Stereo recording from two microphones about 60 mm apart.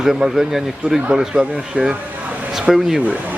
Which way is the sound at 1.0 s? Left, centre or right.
Centre.